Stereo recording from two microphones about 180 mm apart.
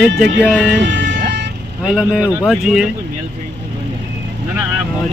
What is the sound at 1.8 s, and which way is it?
Speech, 5° right (ahead or behind).